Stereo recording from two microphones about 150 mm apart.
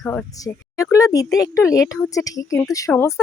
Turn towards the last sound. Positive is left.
turn(degrees=15)  # may be behind; listen again after turning